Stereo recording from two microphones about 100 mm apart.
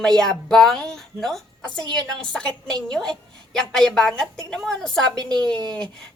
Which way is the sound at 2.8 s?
40° right (ahead or behind).